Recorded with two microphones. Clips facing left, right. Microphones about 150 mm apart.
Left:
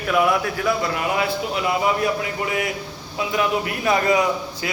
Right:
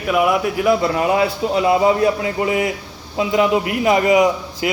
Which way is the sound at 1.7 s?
25° right (ahead or behind).